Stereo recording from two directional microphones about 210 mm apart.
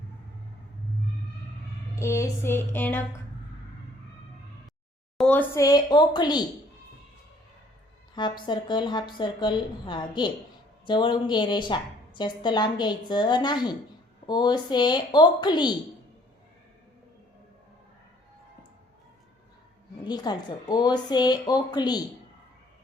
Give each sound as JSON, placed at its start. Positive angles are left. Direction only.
{"t": 2.0, "sound": "a sound", "side_deg": 15}
{"t": 5.1, "sound": "speech", "side_deg": 5}
{"t": 8.1, "sound": "a woman's voice", "side_deg": 20}
{"t": 20.1, "sound": "a woman's voice", "side_deg": 20}